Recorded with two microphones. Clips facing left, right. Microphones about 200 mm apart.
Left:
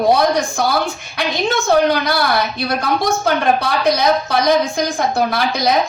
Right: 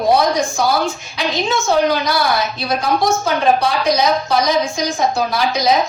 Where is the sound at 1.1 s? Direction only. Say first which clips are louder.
Left 2 dB; 60° left (ahead or behind).